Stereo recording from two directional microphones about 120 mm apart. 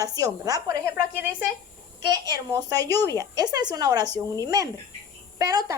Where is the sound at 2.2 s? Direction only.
35° right (ahead or behind).